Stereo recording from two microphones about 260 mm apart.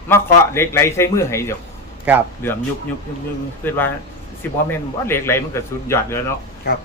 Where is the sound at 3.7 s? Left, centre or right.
Centre.